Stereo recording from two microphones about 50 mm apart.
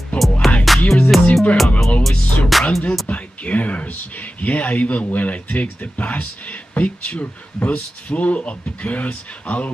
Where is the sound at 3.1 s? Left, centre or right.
Left.